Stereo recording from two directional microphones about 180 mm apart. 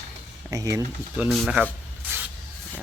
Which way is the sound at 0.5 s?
20° right (ahead or behind).